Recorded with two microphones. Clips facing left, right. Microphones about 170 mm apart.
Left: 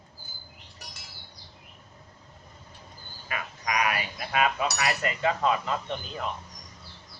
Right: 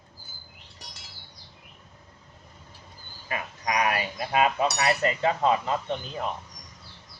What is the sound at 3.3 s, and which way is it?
Speech, 30° right (ahead or behind).